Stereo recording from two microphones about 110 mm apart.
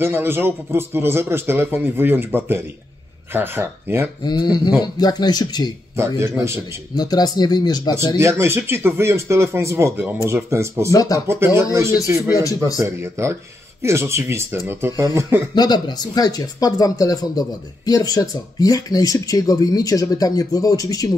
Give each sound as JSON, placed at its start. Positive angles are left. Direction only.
{"t": 0.0, "sound": "a man's voice", "side_deg": -20}
{"t": 4.2, "sound": "speech", "side_deg": 40}
{"t": 5.9, "sound": "a man's voice", "side_deg": -25}
{"t": 7.0, "sound": "speech", "side_deg": 35}
{"t": 8.2, "sound": "a man's voice", "side_deg": -25}
{"t": 10.9, "sound": "speech", "side_deg": 35}
{"t": 11.2, "sound": "a man's voice", "side_deg": -25}
{"t": 12.4, "sound": "speech", "side_deg": 30}
{"t": 12.8, "sound": "a man's voice", "side_deg": -25}
{"t": 15.5, "sound": "speech", "side_deg": 40}